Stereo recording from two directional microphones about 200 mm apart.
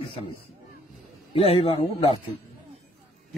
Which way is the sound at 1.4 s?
30° left (ahead or behind).